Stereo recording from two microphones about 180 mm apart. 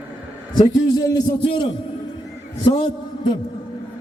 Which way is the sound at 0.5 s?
20° left (ahead or behind).